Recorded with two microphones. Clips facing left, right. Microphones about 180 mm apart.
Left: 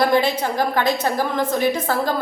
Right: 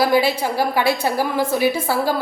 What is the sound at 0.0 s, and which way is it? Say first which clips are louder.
A woman's voice: right 1 dB; 5° right (ahead or behind).